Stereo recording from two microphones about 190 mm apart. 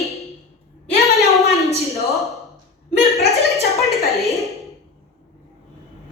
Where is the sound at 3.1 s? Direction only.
Centre (ahead or behind).